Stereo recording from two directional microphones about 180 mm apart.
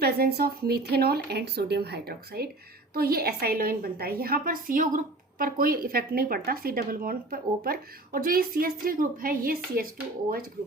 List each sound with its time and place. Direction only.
0.0 s speech: 60° right (ahead or behind)